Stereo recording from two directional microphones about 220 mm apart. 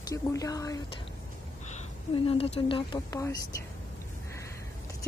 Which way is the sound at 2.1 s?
25° left (ahead or behind).